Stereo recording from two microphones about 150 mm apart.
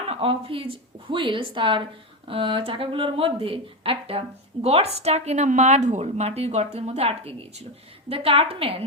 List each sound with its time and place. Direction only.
0.1 s speech: 40° right (ahead or behind)